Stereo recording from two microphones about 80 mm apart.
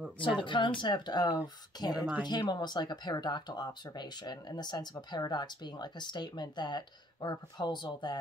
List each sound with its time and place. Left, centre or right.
0.4 s speech: left